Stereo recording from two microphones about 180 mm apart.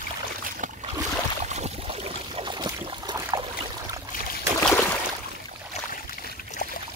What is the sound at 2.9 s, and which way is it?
Boat, 20° right (ahead or behind).